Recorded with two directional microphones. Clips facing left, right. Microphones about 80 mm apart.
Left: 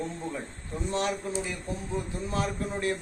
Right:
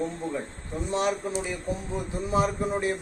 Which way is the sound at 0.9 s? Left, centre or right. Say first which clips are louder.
Right 3 dB; centre.